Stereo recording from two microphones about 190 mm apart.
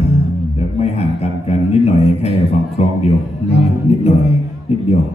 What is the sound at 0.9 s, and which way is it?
A man's voice, 35° left (ahead or behind).